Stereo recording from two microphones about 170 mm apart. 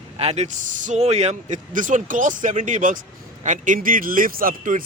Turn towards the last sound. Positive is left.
turn(degrees=-55)  # may be behind; listen again after turning